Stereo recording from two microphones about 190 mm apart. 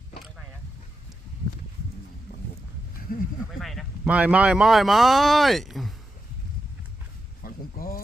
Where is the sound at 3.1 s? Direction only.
50° left (ahead or behind).